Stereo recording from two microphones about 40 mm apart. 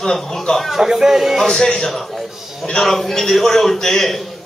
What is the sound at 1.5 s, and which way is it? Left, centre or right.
A man's voice, centre.